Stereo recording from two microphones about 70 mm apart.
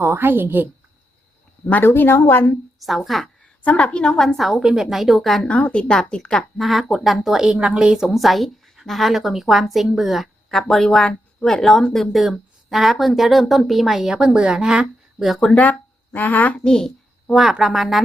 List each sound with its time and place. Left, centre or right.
0.0 s a woman's voice: right
1.8 s a woman's voice: left
2.8 s speech: centre
3.6 s a woman's voice: left
4.2 s speech: centre
5.4 s a woman's voice: centre
6.6 s speech: centre
16.1 s a woman's voice: left
16.6 s a child's voice: centre
17.4 s speech: centre